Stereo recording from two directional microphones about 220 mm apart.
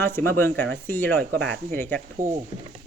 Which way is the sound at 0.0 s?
10° left (ahead or behind).